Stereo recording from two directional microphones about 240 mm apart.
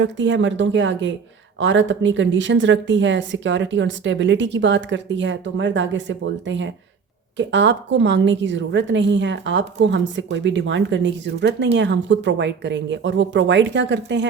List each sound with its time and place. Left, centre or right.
0.0 s a woman's voice: right